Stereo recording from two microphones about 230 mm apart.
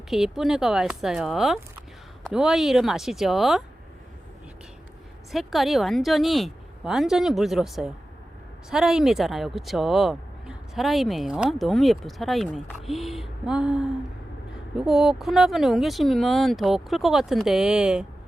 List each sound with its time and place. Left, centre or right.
0.1 s speech: centre
5.3 s speech: centre